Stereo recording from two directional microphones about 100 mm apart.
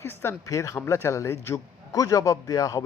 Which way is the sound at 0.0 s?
25° left (ahead or behind).